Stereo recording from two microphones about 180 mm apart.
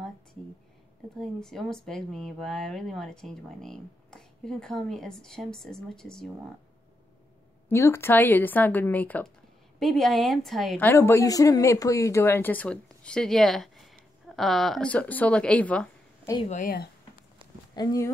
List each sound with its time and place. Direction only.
1.1 s speech: centre (ahead or behind)
7.6 s speech: 15° left (ahead or behind)
10.9 s speech: 15° left (ahead or behind)
16.4 s speech: 50° left (ahead or behind)
17.7 s speech: 20° left (ahead or behind)